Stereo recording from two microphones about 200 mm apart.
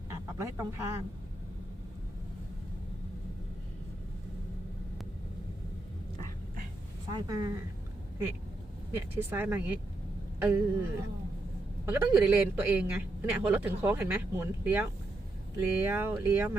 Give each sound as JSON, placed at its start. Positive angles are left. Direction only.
{"t": 0.1, "sound": "a sound", "side_deg": -15}
{"t": 7.1, "sound": "speech", "side_deg": -20}
{"t": 8.9, "sound": "a man's voice", "side_deg": -10}